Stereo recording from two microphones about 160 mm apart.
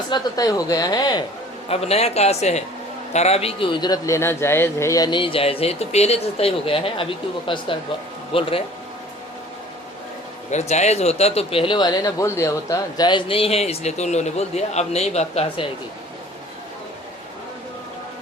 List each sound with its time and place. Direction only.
0.1 s a woman's voice: 25° left (ahead or behind)
1.7 s speech: 40° left (ahead or behind)
10.5 s speech: 45° left (ahead or behind)